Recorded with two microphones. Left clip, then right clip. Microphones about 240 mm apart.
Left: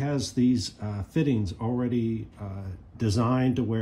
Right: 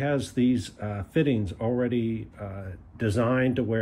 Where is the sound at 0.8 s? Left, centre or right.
Centre.